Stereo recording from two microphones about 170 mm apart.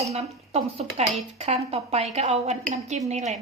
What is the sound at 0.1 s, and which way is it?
A woman's voice, 35° right (ahead or behind).